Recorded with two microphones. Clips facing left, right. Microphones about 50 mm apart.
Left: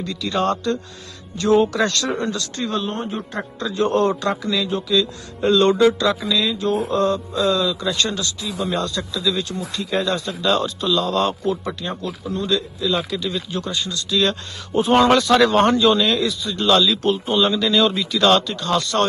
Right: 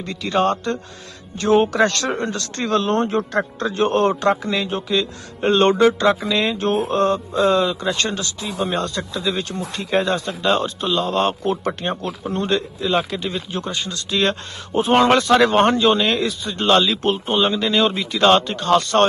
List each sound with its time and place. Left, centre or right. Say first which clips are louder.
0.0 s a man's voice: right 2 dB; right
2.6 s speech: right 8 dB; right
3.6 s a man's voice: left 1 dB; right
11.6 s a man's voice: right 3 dB; right